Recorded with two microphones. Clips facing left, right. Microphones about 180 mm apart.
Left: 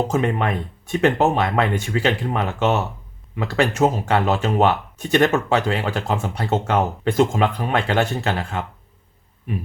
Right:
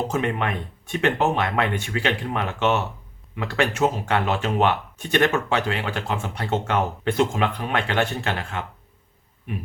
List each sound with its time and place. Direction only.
0.1 s speech: 40° left (ahead or behind)